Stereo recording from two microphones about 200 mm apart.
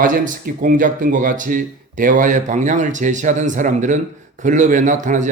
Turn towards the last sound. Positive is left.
turn(degrees=-40)  # may be behind; listen again after turning